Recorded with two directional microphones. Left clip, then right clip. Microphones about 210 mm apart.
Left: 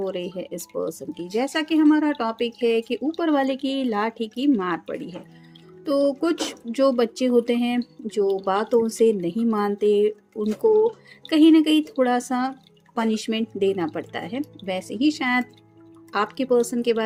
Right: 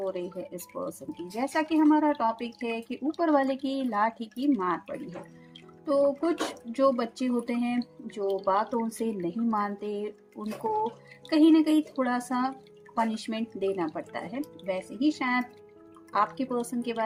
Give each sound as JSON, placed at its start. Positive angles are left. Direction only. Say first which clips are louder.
{"t": 0.0, "sound": "speech", "louder": "left 5 dB", "side_deg": 45}